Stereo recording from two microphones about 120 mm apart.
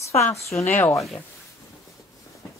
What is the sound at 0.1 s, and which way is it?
Speech, 25° left (ahead or behind).